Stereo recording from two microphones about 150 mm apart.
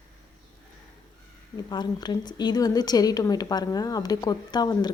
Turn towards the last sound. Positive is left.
turn(degrees=25)  # may be behind; listen again after turning